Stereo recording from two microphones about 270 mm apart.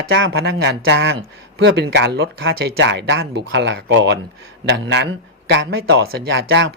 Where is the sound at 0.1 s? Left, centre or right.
Right.